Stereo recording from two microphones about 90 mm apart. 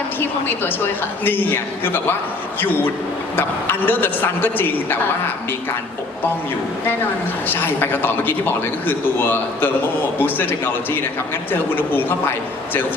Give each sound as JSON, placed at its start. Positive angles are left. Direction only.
{"t": 1.2, "sound": "a woman's voice", "side_deg": 20}
{"t": 7.4, "sound": "a woman's voice", "side_deg": 20}
{"t": 11.5, "sound": "a woman's voice", "side_deg": 20}